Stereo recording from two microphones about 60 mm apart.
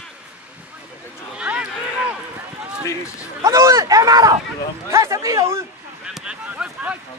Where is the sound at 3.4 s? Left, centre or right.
Right.